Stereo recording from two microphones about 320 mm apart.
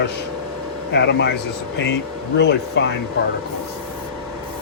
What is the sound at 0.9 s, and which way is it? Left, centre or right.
Speech, left.